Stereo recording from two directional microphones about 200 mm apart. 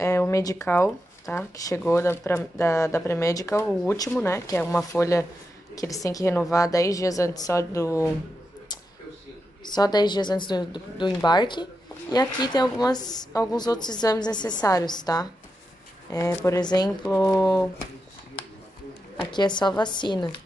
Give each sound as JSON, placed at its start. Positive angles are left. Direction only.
{"t": 0.0, "sound": "speech", "side_deg": 15}
{"t": 9.7, "sound": "a woman's voice", "side_deg": 20}
{"t": 19.3, "sound": "a woman's voice", "side_deg": 20}